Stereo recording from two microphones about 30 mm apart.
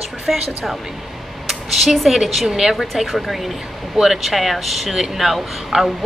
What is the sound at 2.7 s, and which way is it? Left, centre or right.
Speech, centre.